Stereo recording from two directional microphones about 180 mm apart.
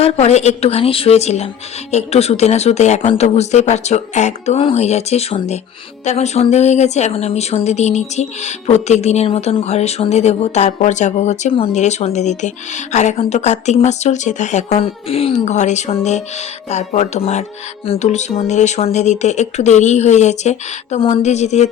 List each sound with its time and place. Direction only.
0.0 s speech: 35° left (ahead or behind)